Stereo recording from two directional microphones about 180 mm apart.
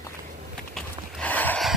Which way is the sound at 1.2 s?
10° left (ahead or behind).